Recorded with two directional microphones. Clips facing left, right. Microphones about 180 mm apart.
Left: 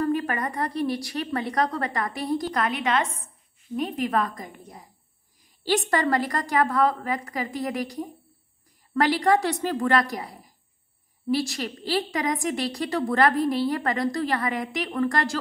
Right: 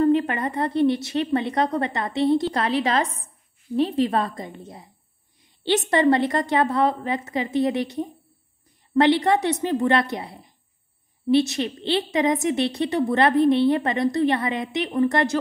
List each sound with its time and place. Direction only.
0.0 s a woman's voice: 25° right (ahead or behind)